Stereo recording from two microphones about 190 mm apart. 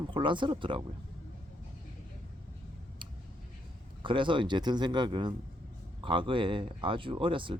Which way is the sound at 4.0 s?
25° right (ahead or behind).